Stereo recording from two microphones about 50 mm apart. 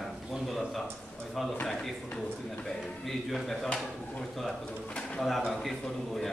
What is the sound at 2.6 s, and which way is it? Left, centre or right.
Speech, centre.